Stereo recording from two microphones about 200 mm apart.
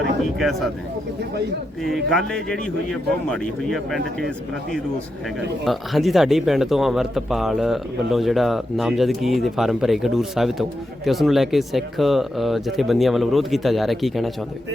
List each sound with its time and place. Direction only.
0.3 s speech: centre (ahead or behind)
1.8 s speech: centre (ahead or behind)
5.6 s speech: centre (ahead or behind)